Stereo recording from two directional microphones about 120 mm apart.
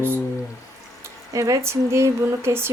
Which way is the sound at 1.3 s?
25° right (ahead or behind).